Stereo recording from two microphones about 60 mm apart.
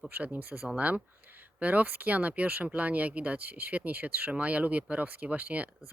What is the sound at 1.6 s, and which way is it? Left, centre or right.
Speech, right.